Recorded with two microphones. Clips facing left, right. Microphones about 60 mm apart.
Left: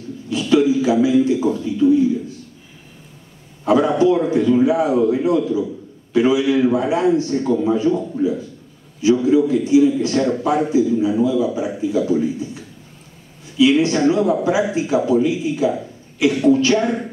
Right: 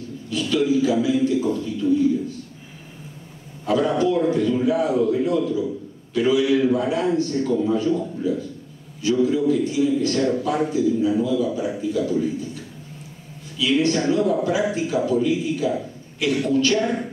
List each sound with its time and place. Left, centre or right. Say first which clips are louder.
0.3 s a sound: left 5 dB; centre
1.8 s a man's voice: left 7 dB; centre
3.6 s a man's voice: left 5 dB; left
13.6 s a man's voice: left 6 dB; centre